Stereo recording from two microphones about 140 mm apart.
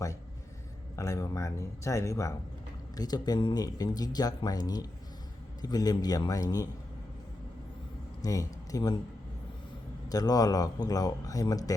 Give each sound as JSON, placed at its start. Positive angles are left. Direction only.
{"t": 0.9, "sound": "speech", "side_deg": 20}
{"t": 8.2, "sound": "speech", "side_deg": 25}
{"t": 10.1, "sound": "speech", "side_deg": 25}